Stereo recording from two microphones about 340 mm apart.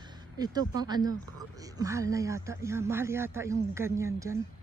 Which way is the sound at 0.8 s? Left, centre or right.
Centre.